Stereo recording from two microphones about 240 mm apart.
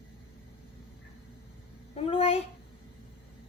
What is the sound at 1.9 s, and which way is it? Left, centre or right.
Speech, left.